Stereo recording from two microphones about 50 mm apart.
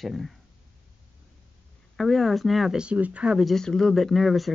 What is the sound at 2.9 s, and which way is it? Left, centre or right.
Speech, right.